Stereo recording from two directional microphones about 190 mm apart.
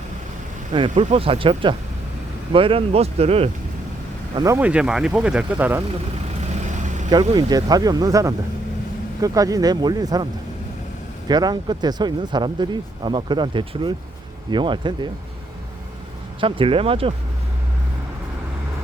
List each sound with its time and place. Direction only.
0.7 s speech: 30° right (ahead or behind)
4.4 s speech: 15° right (ahead or behind)
6.8 s vehicle: 40° right (ahead or behind)
7.1 s speech: 20° right (ahead or behind)
11.3 s speech: 20° right (ahead or behind)
16.4 s speech: 30° right (ahead or behind)